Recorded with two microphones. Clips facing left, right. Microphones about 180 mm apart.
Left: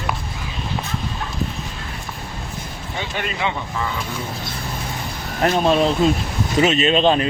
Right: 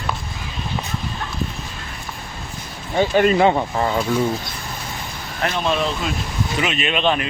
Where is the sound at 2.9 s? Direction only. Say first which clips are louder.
Right 12 dB; 40° right (ahead or behind).